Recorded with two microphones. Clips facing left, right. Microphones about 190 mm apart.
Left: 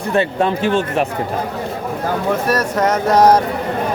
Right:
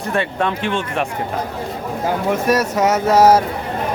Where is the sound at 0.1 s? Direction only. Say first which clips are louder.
Left 4 dB; 30° left (ahead or behind).